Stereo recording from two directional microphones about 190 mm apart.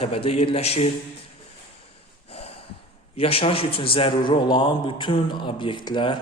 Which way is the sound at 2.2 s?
30° left (ahead or behind).